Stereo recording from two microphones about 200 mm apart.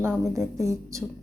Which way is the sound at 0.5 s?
15° right (ahead or behind).